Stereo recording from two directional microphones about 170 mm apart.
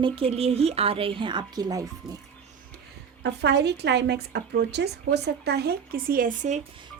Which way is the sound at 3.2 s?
85° right.